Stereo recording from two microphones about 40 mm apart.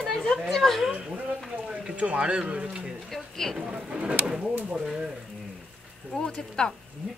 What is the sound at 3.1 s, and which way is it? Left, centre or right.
Speech, centre.